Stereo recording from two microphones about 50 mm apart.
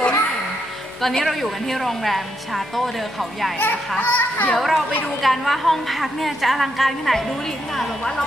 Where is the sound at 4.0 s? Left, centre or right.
Left.